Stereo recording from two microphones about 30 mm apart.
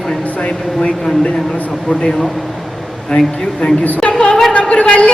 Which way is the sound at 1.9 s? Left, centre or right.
Left.